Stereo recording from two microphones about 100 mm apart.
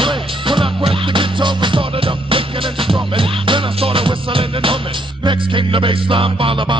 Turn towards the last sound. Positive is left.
turn(degrees=-60)  # may be behind; listen again after turning